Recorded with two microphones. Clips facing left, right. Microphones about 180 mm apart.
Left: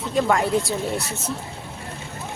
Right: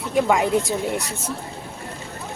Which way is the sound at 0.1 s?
10° right (ahead or behind).